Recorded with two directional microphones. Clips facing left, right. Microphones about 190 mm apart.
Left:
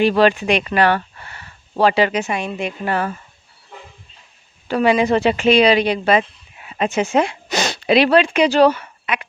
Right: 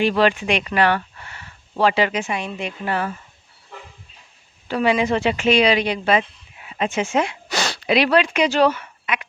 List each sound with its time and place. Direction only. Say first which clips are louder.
0.0 s speech: left 3 dB; 40° left (ahead or behind)
4.7 s speech: left 4 dB; 45° left (ahead or behind)
7.4 s speech: left 4 dB; 20° left (ahead or behind)